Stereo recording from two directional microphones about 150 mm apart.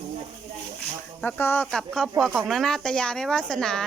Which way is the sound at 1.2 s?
15° left (ahead or behind).